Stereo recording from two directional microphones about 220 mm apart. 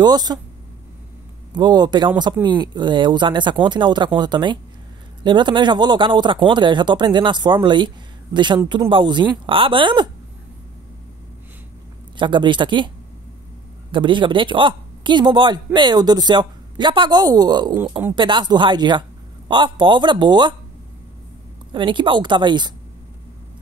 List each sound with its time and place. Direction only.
0.0 s speech: 20° right (ahead or behind)
1.5 s a woman's voice: 20° right (ahead or behind)
12.2 s a woman's voice: 20° right (ahead or behind)
13.9 s a woman's voice: 20° right (ahead or behind)
21.7 s a woman's voice: 20° right (ahead or behind)